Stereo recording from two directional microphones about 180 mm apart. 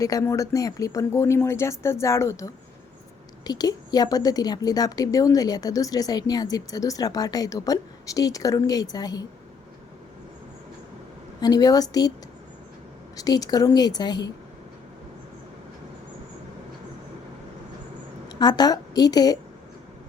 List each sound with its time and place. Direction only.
0.0 s a woman's voice: 20° left (ahead or behind)
11.3 s a woman's voice: 20° left (ahead or behind)
13.1 s a woman's voice: 20° left (ahead or behind)
18.3 s a woman's voice: 25° left (ahead or behind)